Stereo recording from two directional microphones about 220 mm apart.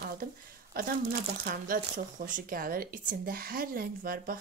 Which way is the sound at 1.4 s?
40° right (ahead or behind).